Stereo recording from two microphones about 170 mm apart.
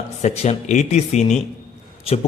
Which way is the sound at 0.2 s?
40° left (ahead or behind).